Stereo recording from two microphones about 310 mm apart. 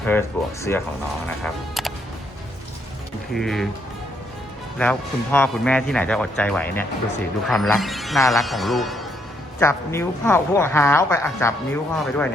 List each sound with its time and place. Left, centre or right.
0.0 s speech: centre
3.3 s speech: centre
4.8 s speech: centre